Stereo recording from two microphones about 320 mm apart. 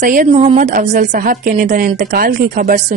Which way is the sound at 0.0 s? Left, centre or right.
Right.